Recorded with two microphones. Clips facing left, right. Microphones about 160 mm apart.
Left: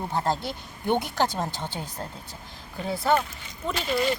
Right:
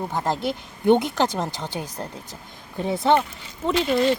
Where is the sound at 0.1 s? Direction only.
15° right (ahead or behind).